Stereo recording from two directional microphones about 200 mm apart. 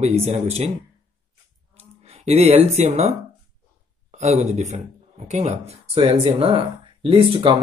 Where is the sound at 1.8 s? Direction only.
30° right (ahead or behind).